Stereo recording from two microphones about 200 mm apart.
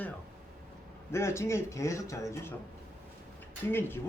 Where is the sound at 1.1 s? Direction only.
15° left (ahead or behind).